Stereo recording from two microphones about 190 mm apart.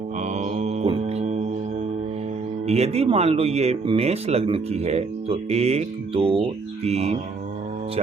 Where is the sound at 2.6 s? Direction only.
35° right (ahead or behind).